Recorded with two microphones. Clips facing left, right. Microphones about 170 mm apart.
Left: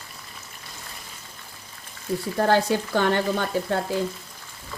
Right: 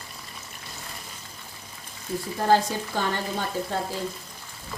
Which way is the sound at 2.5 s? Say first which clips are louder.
Even; 65° left (ahead or behind).